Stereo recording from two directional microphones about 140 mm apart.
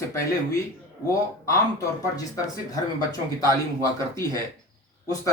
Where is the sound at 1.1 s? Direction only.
20° left (ahead or behind).